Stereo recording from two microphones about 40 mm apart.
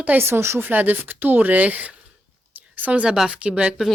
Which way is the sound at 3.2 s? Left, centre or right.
Right.